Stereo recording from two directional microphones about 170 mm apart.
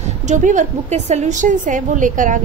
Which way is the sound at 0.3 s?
45° right (ahead or behind).